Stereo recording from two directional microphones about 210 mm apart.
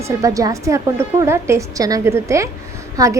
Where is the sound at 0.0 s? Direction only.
15° right (ahead or behind).